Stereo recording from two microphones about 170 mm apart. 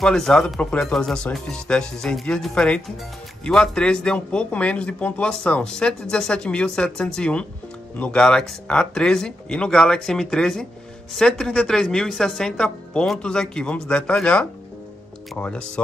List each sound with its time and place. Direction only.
0.0 s speech: 5° left (ahead or behind)